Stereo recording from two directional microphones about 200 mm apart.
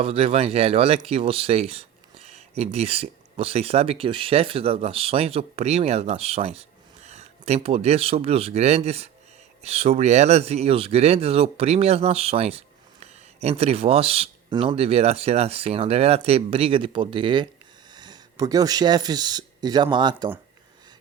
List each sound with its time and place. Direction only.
0.0 s speech: 30° right (ahead or behind)